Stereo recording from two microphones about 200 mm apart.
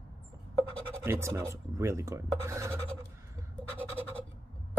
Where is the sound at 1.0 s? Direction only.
15° right (ahead or behind).